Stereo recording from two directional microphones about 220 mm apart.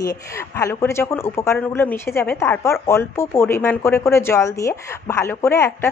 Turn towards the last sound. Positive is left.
turn(degrees=10)  # may be behind; listen again after turning